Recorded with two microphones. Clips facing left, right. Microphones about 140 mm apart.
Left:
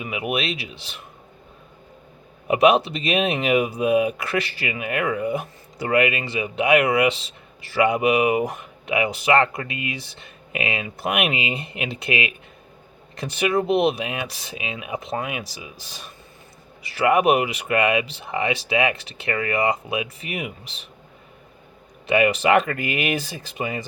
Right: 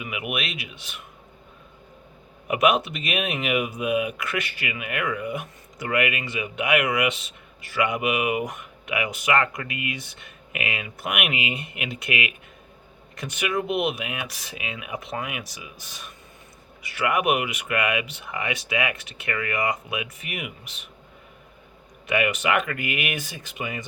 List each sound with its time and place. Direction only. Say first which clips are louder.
0.0 s speech: left 5 dB; 30° left (ahead or behind)
2.5 s speech: left 4 dB; 30° left (ahead or behind)
22.0 s speech: left 5 dB; 30° left (ahead or behind)